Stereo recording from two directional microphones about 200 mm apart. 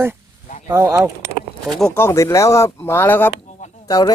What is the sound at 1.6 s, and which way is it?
Speech, 5° left (ahead or behind).